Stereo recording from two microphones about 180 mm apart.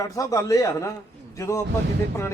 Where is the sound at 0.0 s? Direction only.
20° left (ahead or behind).